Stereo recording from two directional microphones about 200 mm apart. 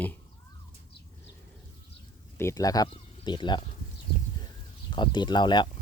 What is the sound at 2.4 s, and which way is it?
Speech, 15° left (ahead or behind).